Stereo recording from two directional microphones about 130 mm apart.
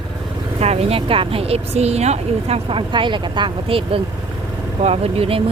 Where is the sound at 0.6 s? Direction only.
55° right (ahead or behind).